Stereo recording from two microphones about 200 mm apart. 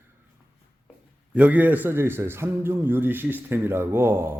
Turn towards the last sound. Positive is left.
turn(degrees=-10)  # may be behind; listen again after turning